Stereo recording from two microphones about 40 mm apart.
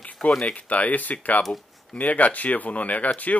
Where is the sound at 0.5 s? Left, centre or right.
Left.